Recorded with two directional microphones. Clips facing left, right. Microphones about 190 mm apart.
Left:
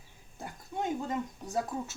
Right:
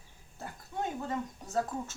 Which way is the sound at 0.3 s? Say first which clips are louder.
Left 1 dB; 15° left (ahead or behind).